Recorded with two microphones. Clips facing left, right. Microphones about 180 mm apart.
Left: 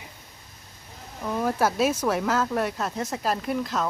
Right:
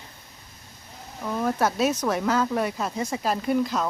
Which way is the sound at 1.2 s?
5° left (ahead or behind).